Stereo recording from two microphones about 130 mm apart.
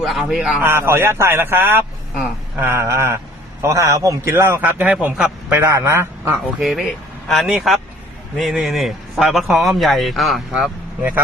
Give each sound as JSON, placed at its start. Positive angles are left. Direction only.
{"t": 0.0, "sound": "a man's voice", "side_deg": 0}
{"t": 0.6, "sound": "a man's voice", "side_deg": -15}
{"t": 5.6, "sound": "a man's voice", "side_deg": -20}
{"t": 6.6, "sound": "a man's voice", "side_deg": 0}